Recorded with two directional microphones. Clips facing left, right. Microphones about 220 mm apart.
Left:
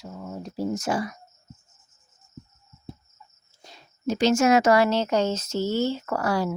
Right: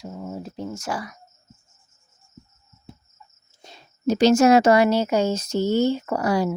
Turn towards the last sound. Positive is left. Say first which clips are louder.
# right 3 dB
turn(degrees=-15)  # may be behind; listen again after turning